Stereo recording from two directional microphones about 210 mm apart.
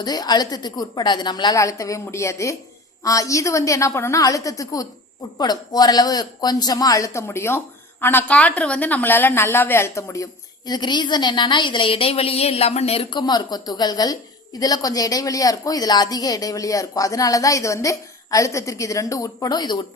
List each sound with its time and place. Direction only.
0.0 s a woman's voice: 20° left (ahead or behind)